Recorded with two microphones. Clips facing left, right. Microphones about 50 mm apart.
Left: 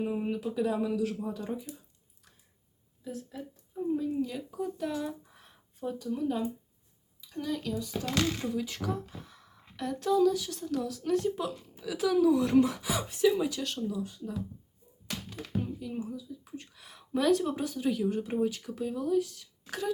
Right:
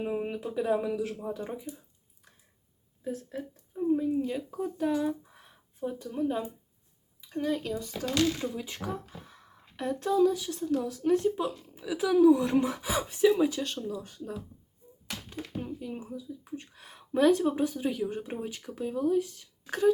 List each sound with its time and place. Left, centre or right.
0.0 s speech: centre
3.0 s speech: right
4.9 s a sound: centre
6.0 s speech: right
7.2 s speech: right
8.5 s speech: right
8.9 s speech: centre
9.3 s speech: right
14.0 s speech: right
15.3 s speech: right
16.1 s speech: right